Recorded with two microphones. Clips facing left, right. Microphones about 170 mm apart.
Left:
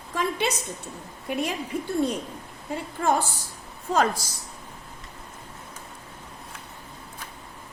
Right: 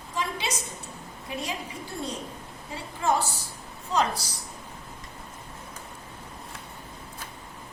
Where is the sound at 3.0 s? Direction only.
50° left (ahead or behind).